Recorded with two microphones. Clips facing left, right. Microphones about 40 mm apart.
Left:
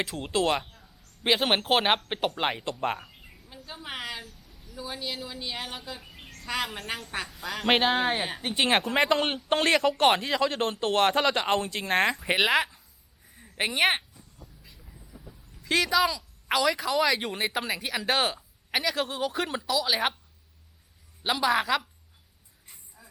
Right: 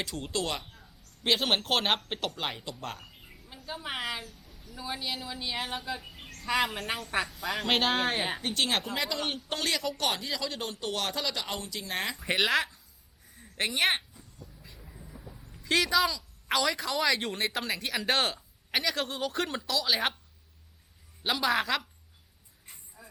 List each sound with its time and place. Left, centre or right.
0.2 s speech: left
1.2 s speech: centre
3.4 s a woman's voice: centre
7.6 s speech: centre
8.5 s speech: left
8.9 s speech: left
12.3 s speech: centre
13.2 s a sound: centre
14.6 s vehicle: centre
15.6 s speech: centre
21.2 s a woman's voice: centre
23.0 s a sound: centre